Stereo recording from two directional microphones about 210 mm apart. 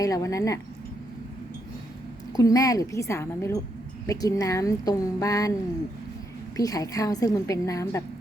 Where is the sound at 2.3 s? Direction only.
15° left (ahead or behind).